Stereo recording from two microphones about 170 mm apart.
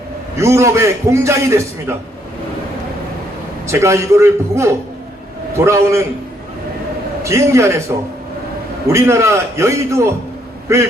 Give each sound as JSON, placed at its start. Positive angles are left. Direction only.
{"t": 0.3, "sound": "a man's voice", "side_deg": -15}
{"t": 3.7, "sound": "a man's voice", "side_deg": -15}
{"t": 7.2, "sound": "a man's voice", "side_deg": -15}
{"t": 8.9, "sound": "a man's voice", "side_deg": -15}